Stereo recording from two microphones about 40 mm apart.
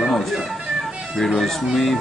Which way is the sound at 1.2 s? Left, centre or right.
Centre.